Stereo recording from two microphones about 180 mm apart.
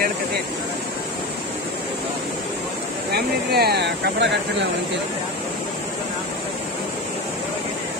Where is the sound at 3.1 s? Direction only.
65° right (ahead or behind).